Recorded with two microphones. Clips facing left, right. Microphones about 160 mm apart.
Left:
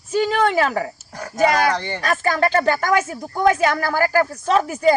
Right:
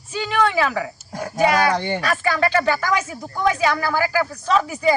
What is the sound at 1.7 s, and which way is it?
Speech, 15° right (ahead or behind).